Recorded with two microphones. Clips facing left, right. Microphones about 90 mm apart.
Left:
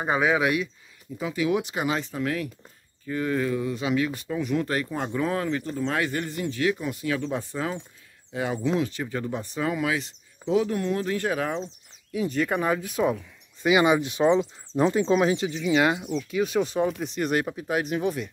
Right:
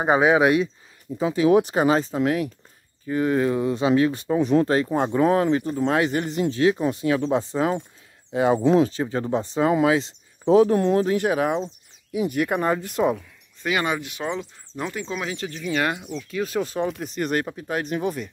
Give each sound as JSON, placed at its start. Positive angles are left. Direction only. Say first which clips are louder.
{"t": 0.0, "sound": "speech", "louder": "right 6 dB", "side_deg": -25}
{"t": 2.1, "sound": "speech", "louder": "right 6 dB", "side_deg": -20}
{"t": 10.5, "sound": "speech", "louder": "right 8 dB", "side_deg": -40}
{"t": 10.8, "sound": "speech", "louder": "right 7 dB", "side_deg": -25}
{"t": 11.1, "sound": "speech", "louder": "right 5 dB", "side_deg": -15}
{"t": 13.6, "sound": "speech", "louder": "left 4 dB", "side_deg": 15}
{"t": 15.3, "sound": "speech", "louder": "left 3 dB", "side_deg": 10}
{"t": 16.8, "sound": "speech", "louder": "even", "side_deg": 0}